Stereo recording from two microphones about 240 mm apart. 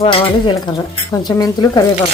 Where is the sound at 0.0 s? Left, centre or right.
Centre.